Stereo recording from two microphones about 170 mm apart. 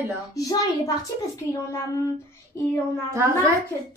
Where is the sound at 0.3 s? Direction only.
20° left (ahead or behind).